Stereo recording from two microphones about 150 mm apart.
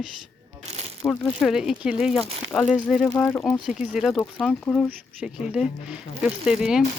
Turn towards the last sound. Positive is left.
turn(degrees=-5)  # may be behind; listen again after turning